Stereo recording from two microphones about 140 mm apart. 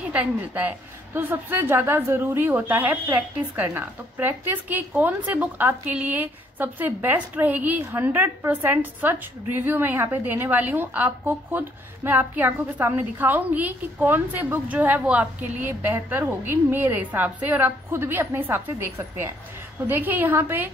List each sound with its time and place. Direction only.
0.1 s a woman's voice: 10° right (ahead or behind)